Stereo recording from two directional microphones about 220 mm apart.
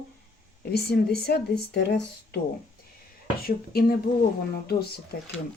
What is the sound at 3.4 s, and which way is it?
Speech, 45° left (ahead or behind).